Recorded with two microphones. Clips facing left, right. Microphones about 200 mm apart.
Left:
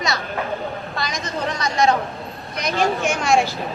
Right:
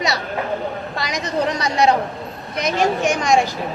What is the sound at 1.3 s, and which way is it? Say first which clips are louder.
Speech: right 6 dB; 35° right (ahead or behind).